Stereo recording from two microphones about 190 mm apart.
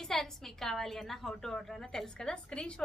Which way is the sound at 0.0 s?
Centre (ahead or behind).